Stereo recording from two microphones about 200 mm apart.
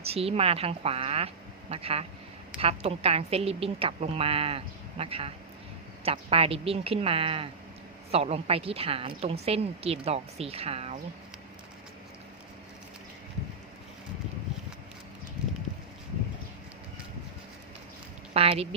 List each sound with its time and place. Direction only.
0.0 s a woman's voice: 30° right (ahead or behind)
18.3 s a woman's voice: 30° right (ahead or behind)